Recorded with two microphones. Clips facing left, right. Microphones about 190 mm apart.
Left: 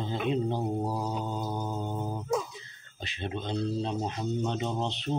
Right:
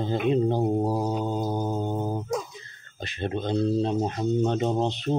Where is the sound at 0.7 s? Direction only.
40° right (ahead or behind).